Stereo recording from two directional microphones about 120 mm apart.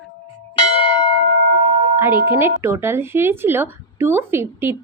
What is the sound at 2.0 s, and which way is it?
A woman's voice, 20° right (ahead or behind).